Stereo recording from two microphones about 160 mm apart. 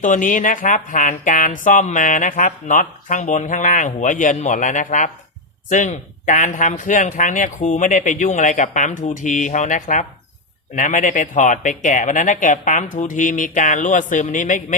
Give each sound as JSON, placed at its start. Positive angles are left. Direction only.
{"t": 0.0, "sound": "speech", "side_deg": 55}